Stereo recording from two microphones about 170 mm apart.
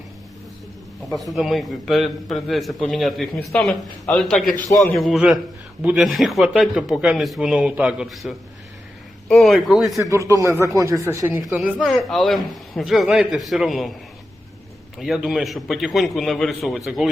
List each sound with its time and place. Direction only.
1.1 s a man's voice: centre (ahead or behind)
10.0 s speech: 15° right (ahead or behind)
11.4 s a man's voice: 5° right (ahead or behind)
14.9 s a man's voice: centre (ahead or behind)